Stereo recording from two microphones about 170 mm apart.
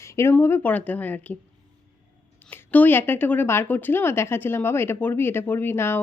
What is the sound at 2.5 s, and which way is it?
A woman's voice, 10° left (ahead or behind).